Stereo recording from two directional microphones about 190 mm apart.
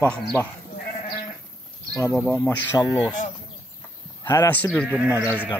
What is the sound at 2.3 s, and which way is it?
Speech, 5° left (ahead or behind).